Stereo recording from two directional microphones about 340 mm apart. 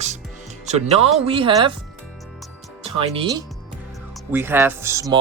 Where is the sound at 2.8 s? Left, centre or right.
Centre.